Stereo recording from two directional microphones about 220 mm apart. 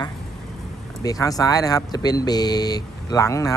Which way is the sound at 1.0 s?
15° left (ahead or behind).